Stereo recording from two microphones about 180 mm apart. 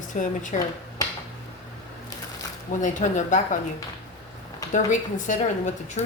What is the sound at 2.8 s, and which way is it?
Speech, 45° left (ahead or behind).